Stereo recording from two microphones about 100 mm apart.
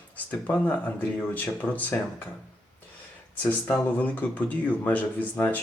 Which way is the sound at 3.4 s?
15° left (ahead or behind).